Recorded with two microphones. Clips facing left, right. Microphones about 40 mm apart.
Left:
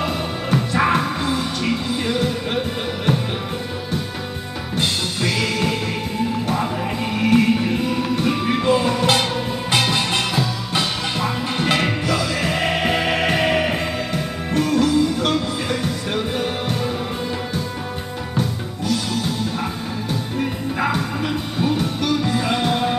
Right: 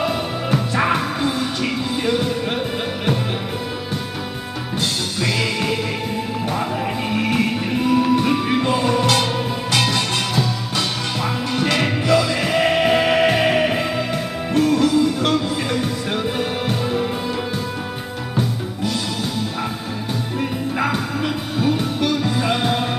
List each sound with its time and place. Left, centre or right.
0.0 s music: centre
5.2 s music: centre
7.2 s music: centre
9.8 s music: centre
20.8 s music: centre